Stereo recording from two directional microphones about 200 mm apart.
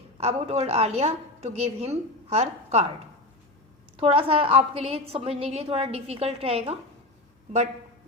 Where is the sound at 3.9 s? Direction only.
25° right (ahead or behind).